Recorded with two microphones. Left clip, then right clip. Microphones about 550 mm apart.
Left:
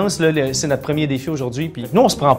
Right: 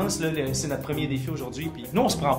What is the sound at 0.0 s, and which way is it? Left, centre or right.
Speech, left.